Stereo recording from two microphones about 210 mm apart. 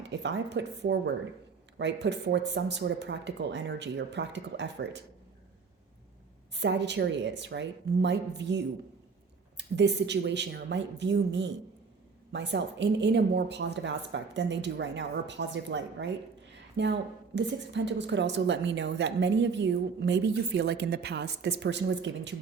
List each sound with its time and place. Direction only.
0.1 s a woman's voice: 55° right (ahead or behind)
6.5 s a woman's voice: 55° right (ahead or behind)